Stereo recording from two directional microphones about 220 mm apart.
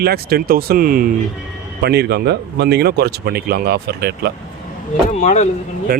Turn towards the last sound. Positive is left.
turn(degrees=-45)  # may be behind; listen again after turning